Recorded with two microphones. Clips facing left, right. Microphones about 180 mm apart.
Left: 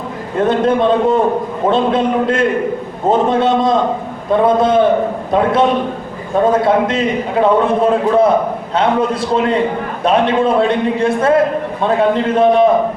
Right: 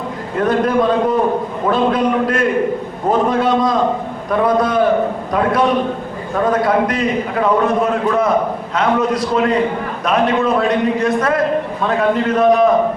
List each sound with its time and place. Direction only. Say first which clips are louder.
0.3 s a man's voice: left 2 dB; 25° left (ahead or behind)